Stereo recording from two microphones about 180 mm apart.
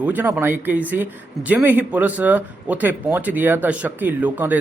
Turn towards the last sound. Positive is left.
turn(degrees=-10)  # may be behind; listen again after turning